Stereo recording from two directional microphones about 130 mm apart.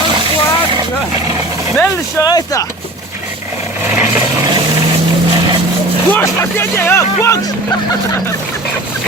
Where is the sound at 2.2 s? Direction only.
30° left (ahead or behind).